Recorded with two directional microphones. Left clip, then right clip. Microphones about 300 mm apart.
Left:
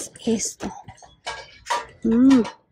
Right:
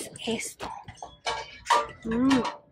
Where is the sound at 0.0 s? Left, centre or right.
Centre.